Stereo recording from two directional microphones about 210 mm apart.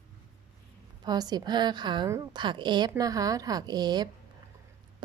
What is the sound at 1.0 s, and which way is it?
Speech, 20° right (ahead or behind).